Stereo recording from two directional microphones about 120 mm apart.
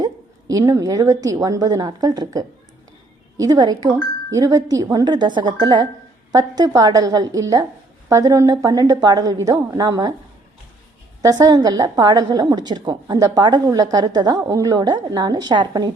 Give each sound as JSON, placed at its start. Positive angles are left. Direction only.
{"t": 0.0, "sound": "a sound", "side_deg": -30}
{"t": 1.2, "sound": "a woman's voice", "side_deg": -30}
{"t": 11.2, "sound": "a woman's voice", "side_deg": -35}